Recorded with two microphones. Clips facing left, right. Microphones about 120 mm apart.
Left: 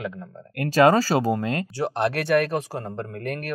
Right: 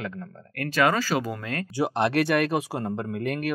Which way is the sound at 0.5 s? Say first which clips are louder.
Left 6 dB; 30° left (ahead or behind).